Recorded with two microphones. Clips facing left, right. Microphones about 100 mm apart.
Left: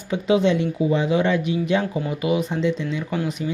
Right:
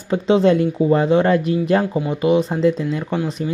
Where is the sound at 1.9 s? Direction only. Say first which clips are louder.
Right 5 dB; 30° right (ahead or behind).